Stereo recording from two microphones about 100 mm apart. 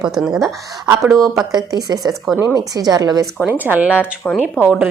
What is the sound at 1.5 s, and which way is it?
A woman's voice, 40° right (ahead or behind).